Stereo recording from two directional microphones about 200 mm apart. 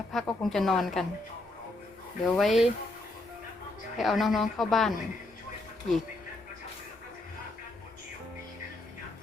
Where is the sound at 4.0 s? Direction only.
Centre (ahead or behind).